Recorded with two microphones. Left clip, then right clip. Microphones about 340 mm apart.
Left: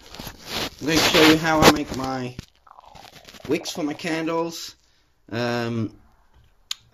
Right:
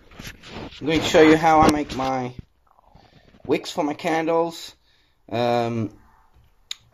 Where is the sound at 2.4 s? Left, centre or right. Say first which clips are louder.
Left 7 dB; left.